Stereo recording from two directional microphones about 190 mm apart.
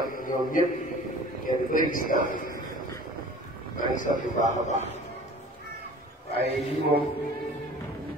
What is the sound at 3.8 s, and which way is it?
Speech, 45° left (ahead or behind).